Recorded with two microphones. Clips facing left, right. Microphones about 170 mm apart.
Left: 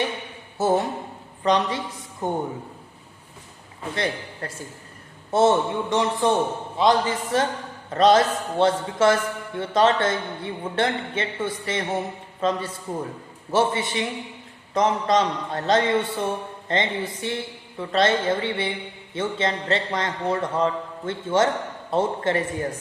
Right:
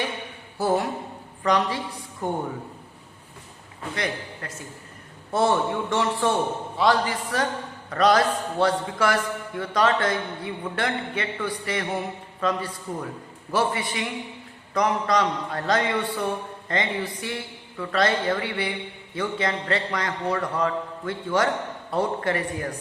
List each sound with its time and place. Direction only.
0.6 s a sound: 20° left (ahead or behind)
1.5 s a man's voice: 20° left (ahead or behind)
3.9 s a man's voice: 30° left (ahead or behind)